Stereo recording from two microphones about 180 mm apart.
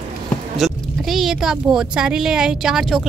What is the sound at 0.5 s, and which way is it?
Speech, centre (ahead or behind).